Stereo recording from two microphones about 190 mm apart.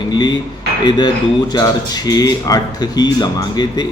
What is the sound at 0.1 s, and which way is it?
Speech, 20° left (ahead or behind).